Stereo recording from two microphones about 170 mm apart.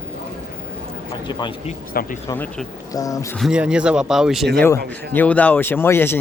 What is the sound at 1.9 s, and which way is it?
Speech, 60° left (ahead or behind).